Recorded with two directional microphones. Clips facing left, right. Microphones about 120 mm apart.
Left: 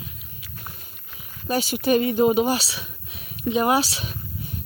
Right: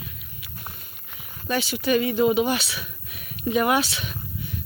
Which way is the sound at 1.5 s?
45° left (ahead or behind).